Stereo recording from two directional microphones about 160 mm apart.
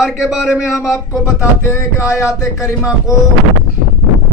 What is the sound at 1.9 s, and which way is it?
Speech, 20° left (ahead or behind).